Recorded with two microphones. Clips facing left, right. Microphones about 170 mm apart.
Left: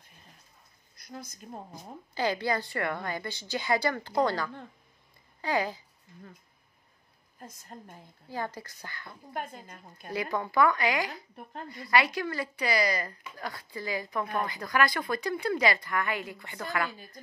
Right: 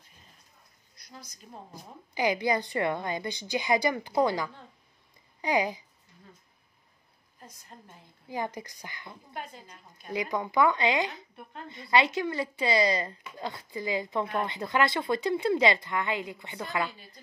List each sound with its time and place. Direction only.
0.9 s speech: 50° left (ahead or behind)
2.1 s a woman's voice: 15° right (ahead or behind)
7.7 s a woman's voice: 50° left (ahead or behind)
8.3 s a woman's voice: 15° right (ahead or behind)
9.3 s a woman's voice: 50° left (ahead or behind)
10.1 s speech: 15° right (ahead or behind)